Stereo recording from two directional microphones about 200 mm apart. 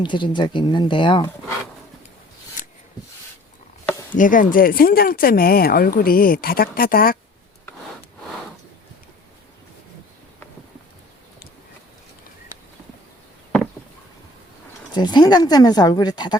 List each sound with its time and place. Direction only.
0.0 s speech: 20° left (ahead or behind)
4.1 s speech: 40° left (ahead or behind)
14.9 s speech: 20° left (ahead or behind)